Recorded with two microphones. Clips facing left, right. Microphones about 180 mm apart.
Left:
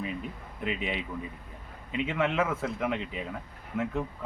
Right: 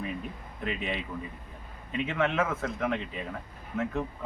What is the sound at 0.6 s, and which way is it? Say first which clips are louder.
Speech: left 1 dB; 5° left (ahead or behind).